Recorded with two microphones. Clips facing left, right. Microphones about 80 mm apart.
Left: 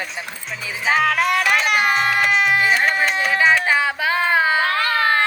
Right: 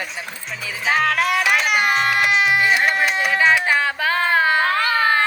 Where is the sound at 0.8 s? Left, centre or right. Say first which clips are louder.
Left 1 dB; centre.